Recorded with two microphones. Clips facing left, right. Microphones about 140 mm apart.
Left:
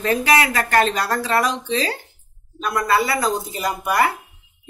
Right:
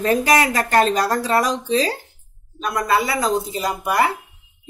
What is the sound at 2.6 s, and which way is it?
Speech, 20° right (ahead or behind).